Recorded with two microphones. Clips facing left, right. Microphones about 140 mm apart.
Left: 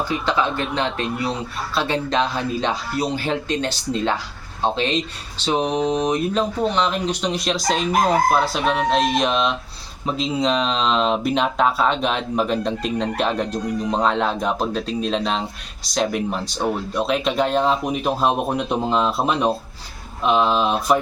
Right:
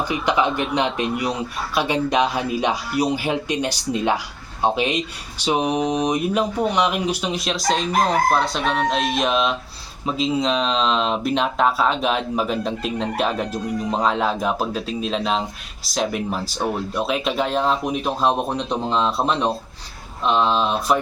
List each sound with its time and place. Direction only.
0.0 s speech: 15° right (ahead or behind); by 21.0 s 5° left (ahead or behind)